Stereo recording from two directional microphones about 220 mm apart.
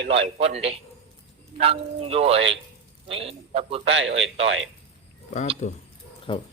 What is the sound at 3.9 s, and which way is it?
Speech, 55° right (ahead or behind).